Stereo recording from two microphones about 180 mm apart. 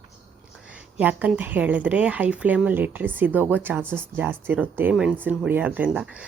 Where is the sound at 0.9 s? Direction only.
10° right (ahead or behind).